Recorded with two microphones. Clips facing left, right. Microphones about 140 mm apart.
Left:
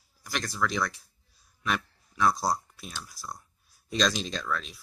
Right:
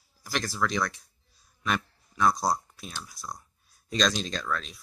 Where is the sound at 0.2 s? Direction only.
Centre (ahead or behind).